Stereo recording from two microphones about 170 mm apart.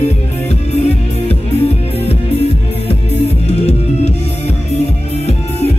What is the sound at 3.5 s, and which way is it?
Music, 40° left (ahead or behind).